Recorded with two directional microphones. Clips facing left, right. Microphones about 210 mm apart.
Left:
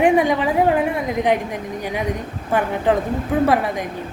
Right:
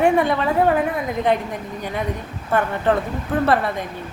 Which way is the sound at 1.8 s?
10° left (ahead or behind).